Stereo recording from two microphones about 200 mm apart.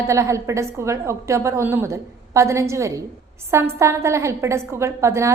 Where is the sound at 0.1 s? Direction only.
15° right (ahead or behind).